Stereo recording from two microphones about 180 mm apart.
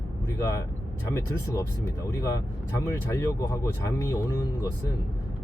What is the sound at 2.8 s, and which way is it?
Speech, 15° left (ahead or behind).